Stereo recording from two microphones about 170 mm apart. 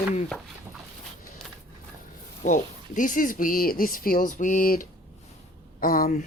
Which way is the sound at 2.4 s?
45° left (ahead or behind).